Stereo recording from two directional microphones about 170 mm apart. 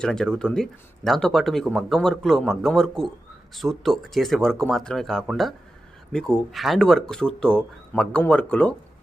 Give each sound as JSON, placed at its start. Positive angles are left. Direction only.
{"t": 0.0, "sound": "speech", "side_deg": 5}